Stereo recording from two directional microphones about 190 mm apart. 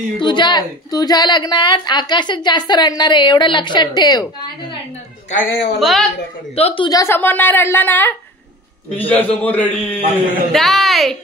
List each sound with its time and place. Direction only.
0.2 s a woman's voice: 25° left (ahead or behind)
5.3 s speech: 60° left (ahead or behind)
5.8 s a woman's voice: centre (ahead or behind)
6.5 s a woman's voice: 30° left (ahead or behind); by 11.1 s centre (ahead or behind)